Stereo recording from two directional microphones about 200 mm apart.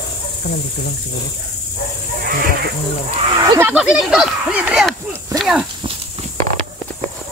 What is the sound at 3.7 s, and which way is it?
Speech, 5° right (ahead or behind).